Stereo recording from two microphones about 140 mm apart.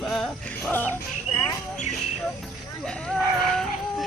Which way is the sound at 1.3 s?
30° left (ahead or behind).